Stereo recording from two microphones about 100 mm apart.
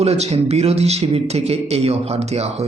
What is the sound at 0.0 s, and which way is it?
Speech, 90° right.